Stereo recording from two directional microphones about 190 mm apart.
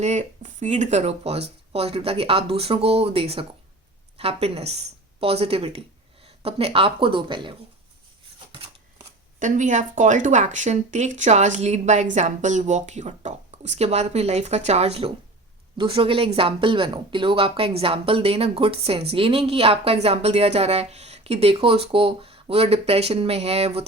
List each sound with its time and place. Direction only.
0.0 s speech: 40° right (ahead or behind)
9.4 s speech: 40° right (ahead or behind)